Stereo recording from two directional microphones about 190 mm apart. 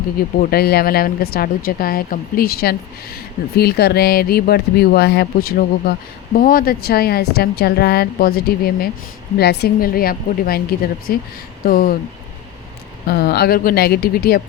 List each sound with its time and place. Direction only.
0.2 s speech: 55° left (ahead or behind)
13.1 s speech: 55° left (ahead or behind)